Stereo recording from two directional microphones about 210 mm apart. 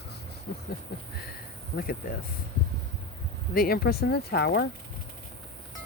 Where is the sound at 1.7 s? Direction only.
45° left (ahead or behind).